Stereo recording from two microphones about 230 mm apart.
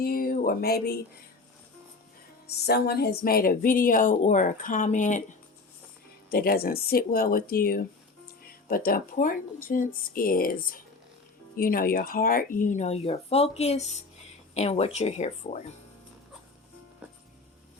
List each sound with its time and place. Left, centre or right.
0.0 s speech: left
2.5 s speech: left
6.3 s speech: left
17.0 s music: centre